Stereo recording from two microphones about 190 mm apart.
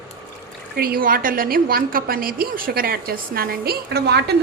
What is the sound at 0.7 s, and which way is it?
A woman's voice, 50° right (ahead or behind).